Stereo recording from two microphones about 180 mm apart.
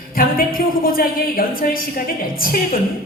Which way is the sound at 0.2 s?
50° left (ahead or behind).